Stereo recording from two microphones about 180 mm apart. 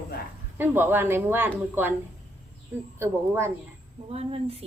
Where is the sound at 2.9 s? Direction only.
15° right (ahead or behind).